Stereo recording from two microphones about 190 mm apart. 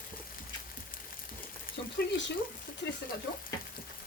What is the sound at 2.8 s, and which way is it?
Frying, 70° left (ahead or behind).